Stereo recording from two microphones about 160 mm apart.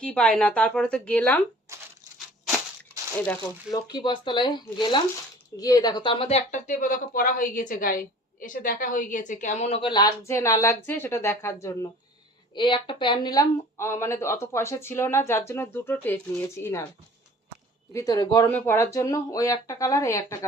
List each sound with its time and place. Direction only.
0.0 s speech: 5° left (ahead or behind)
1.7 s tearing: 15° right (ahead or behind)
3.7 s speech: 25° left (ahead or behind); by 9.9 s 40° left (ahead or behind)
9.9 s speech: 20° left (ahead or behind)
12.5 s speech: 30° left (ahead or behind)
17.9 s speech: 25° left (ahead or behind)
18.5 s speech: 15° left (ahead or behind)